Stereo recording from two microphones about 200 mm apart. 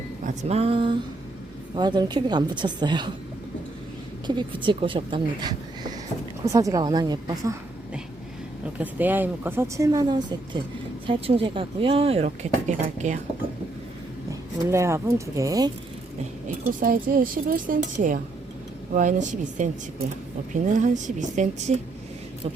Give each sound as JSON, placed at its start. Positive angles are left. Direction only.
{"t": 0.4, "sound": "speech", "side_deg": -30}
{"t": 4.4, "sound": "speech", "side_deg": -25}
{"t": 8.8, "sound": "speech", "side_deg": -10}
{"t": 14.3, "sound": "speech", "side_deg": -15}
{"t": 16.8, "sound": "a woman's voice", "side_deg": -45}